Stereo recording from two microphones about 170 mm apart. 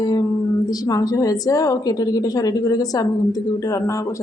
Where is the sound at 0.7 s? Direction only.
20° left (ahead or behind).